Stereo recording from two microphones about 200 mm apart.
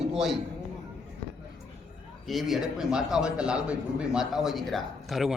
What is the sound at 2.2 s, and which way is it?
A man's voice, centre (ahead or behind).